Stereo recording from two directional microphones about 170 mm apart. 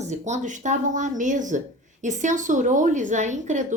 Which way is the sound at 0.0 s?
45° right (ahead or behind).